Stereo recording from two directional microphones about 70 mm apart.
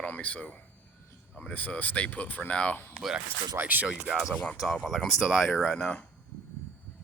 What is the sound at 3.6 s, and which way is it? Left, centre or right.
Speech, right.